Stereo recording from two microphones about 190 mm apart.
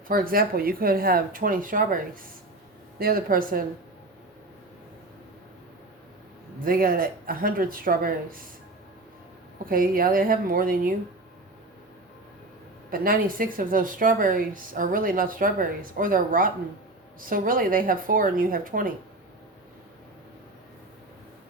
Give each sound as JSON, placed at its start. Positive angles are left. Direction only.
{"t": 0.1, "sound": "speech", "side_deg": -50}
{"t": 3.0, "sound": "speech", "side_deg": -50}
{"t": 6.7, "sound": "speech", "side_deg": -50}
{"t": 9.6, "sound": "speech", "side_deg": -50}
{"t": 12.9, "sound": "speech", "side_deg": -50}